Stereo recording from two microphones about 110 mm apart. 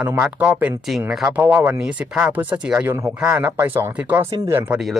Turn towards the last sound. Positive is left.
turn(degrees=-25)  # may be behind; listen again after turning